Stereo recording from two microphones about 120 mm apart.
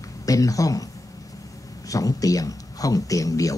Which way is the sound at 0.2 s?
30° left (ahead or behind).